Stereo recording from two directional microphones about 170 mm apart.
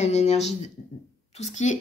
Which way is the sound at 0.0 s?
40° left (ahead or behind).